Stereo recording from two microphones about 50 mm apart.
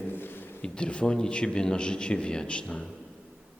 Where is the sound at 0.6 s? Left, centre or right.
Left.